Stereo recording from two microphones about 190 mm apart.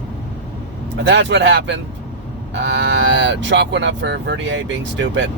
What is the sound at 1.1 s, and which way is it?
Speech, 70° right (ahead or behind).